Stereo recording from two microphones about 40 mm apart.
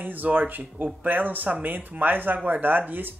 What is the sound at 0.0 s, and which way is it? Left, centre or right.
Speech, right.